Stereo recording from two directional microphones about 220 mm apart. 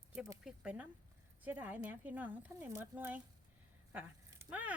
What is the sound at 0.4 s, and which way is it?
Speech, 5° right (ahead or behind).